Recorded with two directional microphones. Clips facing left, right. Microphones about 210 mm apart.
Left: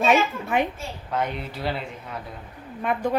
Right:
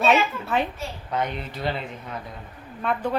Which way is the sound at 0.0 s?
10° left (ahead or behind).